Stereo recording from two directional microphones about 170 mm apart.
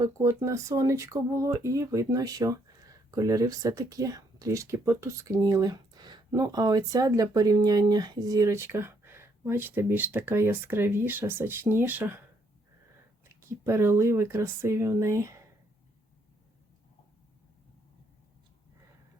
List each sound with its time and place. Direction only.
0.0 s speech: 15° right (ahead or behind)
13.2 s speech: 15° right (ahead or behind)